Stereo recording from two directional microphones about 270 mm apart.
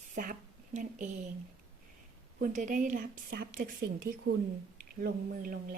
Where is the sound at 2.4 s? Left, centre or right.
Right.